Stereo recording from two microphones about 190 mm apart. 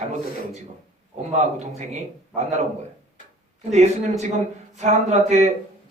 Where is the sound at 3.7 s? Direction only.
35° right (ahead or behind).